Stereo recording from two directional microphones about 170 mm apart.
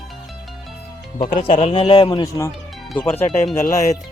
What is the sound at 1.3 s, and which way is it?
Speech, 40° left (ahead or behind).